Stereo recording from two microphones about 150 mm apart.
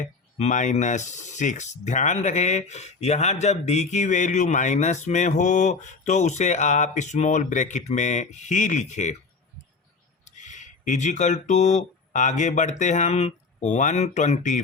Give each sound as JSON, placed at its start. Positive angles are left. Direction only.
{"t": 0.0, "sound": "speech", "side_deg": 50}
{"t": 10.2, "sound": "speech", "side_deg": 55}